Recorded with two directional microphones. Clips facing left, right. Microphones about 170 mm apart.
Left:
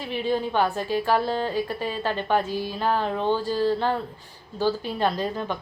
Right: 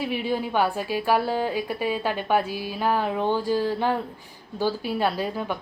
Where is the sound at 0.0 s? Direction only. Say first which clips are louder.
Even; 10° right (ahead or behind).